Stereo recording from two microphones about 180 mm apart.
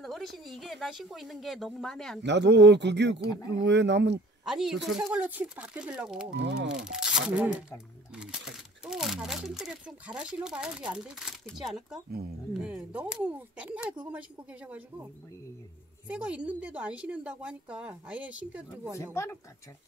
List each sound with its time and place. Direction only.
0.0 s a sound: centre (ahead or behind)
0.4 s speech: centre (ahead or behind)
2.2 s speech: 75° right (ahead or behind)
3.2 s speech: 20° left (ahead or behind)
3.6 s speech: 75° right (ahead or behind)
4.5 s speech: centre (ahead or behind)
6.3 s speech: 80° right
6.8 s a woman's voice: 5° right (ahead or behind)
16.1 s a woman's voice: 5° right (ahead or behind)